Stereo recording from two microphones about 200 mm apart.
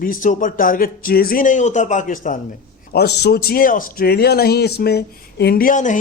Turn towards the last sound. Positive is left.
turn(degrees=40)  # may be behind; listen again after turning